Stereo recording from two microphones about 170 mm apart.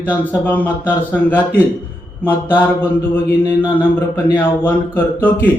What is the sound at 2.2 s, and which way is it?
Mantra, 10° left (ahead or behind).